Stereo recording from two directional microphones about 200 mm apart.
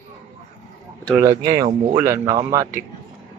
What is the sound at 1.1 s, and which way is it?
Speech, 15° right (ahead or behind).